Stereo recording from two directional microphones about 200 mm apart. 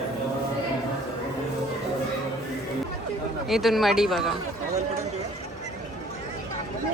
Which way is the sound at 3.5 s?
Centre (ahead or behind).